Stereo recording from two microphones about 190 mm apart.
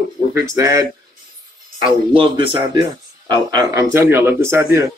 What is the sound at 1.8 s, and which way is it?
A man's voice, 25° right (ahead or behind).